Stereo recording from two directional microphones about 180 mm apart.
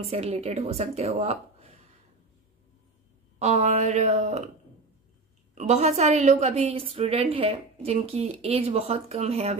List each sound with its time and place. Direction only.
0.1 s a woman's voice: 35° right (ahead or behind)
3.3 s a woman's voice: 40° right (ahead or behind)
5.5 s a woman's voice: 40° right (ahead or behind)